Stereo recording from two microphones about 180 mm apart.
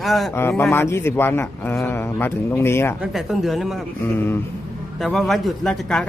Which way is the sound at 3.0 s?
Centre (ahead or behind).